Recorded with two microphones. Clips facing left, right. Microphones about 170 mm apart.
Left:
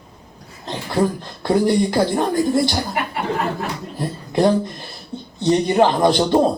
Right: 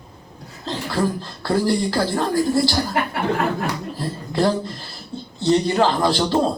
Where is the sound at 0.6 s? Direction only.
20° left (ahead or behind).